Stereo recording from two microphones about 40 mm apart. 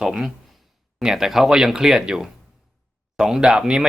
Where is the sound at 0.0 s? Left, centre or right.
Centre.